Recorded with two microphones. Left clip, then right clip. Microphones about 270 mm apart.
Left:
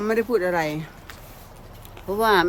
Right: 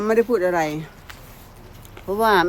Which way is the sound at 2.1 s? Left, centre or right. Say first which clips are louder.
Right 2 dB; centre.